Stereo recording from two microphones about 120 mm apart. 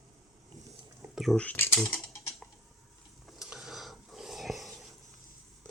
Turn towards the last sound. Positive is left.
turn(degrees=0)  # may be behind; listen again after turning